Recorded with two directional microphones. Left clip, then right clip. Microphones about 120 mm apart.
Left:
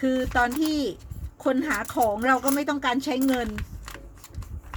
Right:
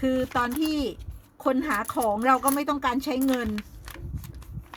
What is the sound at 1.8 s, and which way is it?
Speech, 35° right (ahead or behind).